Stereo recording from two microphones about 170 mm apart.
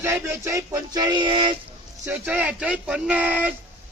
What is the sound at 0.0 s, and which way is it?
Music, 15° right (ahead or behind).